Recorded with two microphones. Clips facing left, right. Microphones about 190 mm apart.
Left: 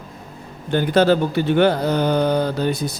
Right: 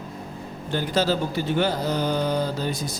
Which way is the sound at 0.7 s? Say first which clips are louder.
Left 7 dB; 60° left (ahead or behind).